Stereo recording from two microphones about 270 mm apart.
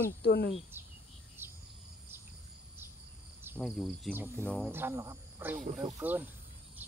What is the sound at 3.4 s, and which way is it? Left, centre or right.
Cricket, centre.